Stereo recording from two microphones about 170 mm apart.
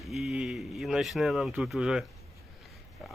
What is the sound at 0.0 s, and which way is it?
A man's voice, centre (ahead or behind).